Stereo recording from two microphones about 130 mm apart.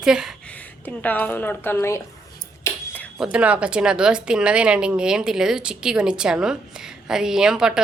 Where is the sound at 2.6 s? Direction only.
15° left (ahead or behind).